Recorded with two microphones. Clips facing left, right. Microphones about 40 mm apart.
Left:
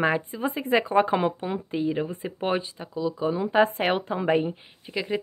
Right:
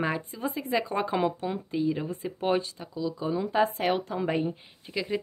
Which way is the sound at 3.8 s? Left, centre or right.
Left.